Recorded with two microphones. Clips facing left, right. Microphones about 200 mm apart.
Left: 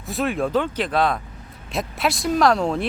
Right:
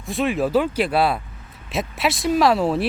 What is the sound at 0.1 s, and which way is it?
Speech, centre (ahead or behind).